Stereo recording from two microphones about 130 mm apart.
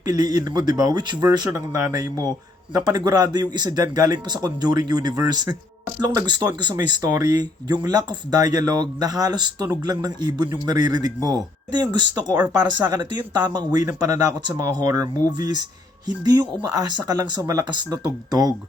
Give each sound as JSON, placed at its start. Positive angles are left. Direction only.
{"t": 0.0, "sound": "speech", "side_deg": -30}